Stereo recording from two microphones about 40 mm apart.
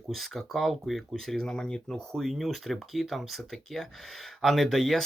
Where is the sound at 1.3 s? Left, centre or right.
Centre.